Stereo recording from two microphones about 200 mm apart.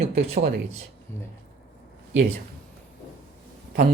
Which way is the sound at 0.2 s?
35° right (ahead or behind).